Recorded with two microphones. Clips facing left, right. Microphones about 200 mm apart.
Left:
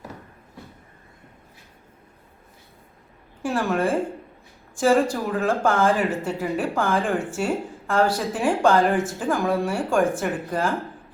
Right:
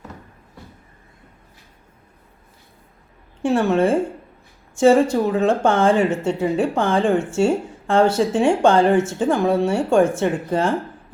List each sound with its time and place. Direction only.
3.4 s speech: 25° right (ahead or behind)